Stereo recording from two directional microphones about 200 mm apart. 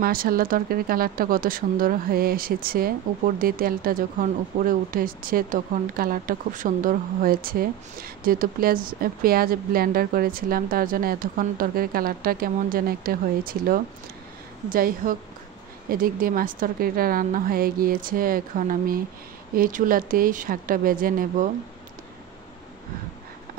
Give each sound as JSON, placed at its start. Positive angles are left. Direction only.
{"t": 0.0, "sound": "speech", "side_deg": -45}